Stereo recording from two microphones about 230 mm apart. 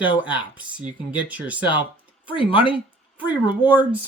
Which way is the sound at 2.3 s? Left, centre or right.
Left.